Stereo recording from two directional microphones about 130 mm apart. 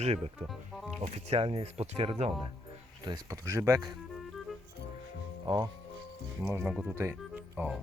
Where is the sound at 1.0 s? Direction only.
55° right (ahead or behind).